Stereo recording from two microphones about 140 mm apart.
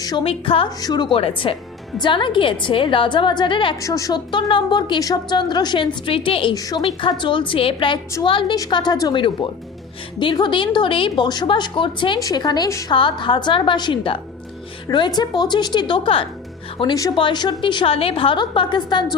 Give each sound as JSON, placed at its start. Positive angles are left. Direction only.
{"t": 0.0, "sound": "a woman's voice", "side_deg": 30}
{"t": 0.3, "sound": "a woman's voice", "side_deg": 40}
{"t": 0.8, "sound": "a woman's voice", "side_deg": 30}
{"t": 3.8, "sound": "a woman's voice", "side_deg": 25}
{"t": 6.5, "sound": "a woman's voice", "side_deg": 25}
{"t": 12.9, "sound": "a woman's voice", "side_deg": 35}